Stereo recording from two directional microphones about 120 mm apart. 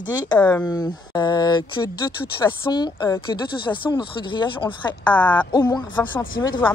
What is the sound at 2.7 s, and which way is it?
Speech, 35° left (ahead or behind).